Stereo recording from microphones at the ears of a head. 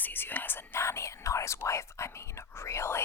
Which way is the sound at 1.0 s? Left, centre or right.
Left.